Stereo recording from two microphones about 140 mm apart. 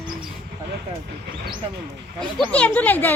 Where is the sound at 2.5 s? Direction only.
10° left (ahead or behind).